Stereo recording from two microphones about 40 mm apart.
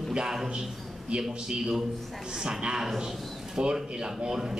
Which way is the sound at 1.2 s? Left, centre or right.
Centre.